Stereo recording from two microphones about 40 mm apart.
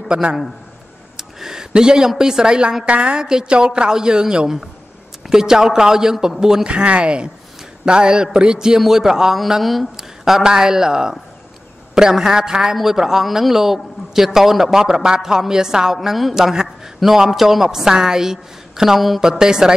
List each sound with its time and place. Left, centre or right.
0.1 s a woman's voice: right
1.1 s a woman's voice: centre
6.7 s a woman's voice: right; by 9.4 s centre
9.6 s a man's voice: centre
19.2 s a man's voice: centre